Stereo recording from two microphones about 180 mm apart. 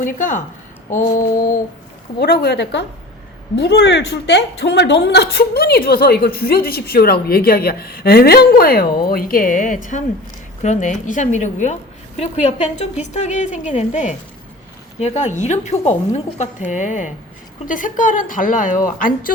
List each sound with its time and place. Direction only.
0.0 s a woman's voice: 45° left (ahead or behind)
2.1 s a woman's voice: 65° left (ahead or behind); by 19.3 s 50° left (ahead or behind)